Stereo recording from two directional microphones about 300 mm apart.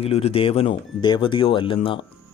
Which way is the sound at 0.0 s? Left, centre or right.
Centre.